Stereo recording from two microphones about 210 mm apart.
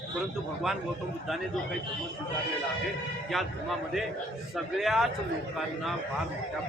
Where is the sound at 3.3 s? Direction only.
Centre (ahead or behind).